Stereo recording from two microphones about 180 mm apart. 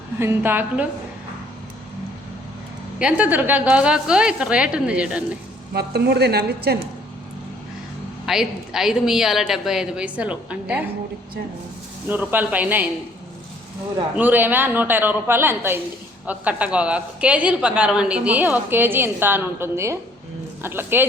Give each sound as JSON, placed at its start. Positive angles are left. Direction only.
{"t": 0.2, "sound": "a woman's voice", "side_deg": -15}
{"t": 3.0, "sound": "a woman's voice", "side_deg": -5}
{"t": 5.7, "sound": "a woman's voice", "side_deg": -65}
{"t": 8.3, "sound": "a woman's voice", "side_deg": -5}
{"t": 12.0, "sound": "a woman's voice", "side_deg": -10}
{"t": 14.2, "sound": "a woman's voice", "side_deg": -10}